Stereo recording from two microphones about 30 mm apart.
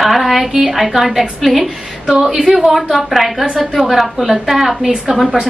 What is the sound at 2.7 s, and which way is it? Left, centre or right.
A woman's voice, centre.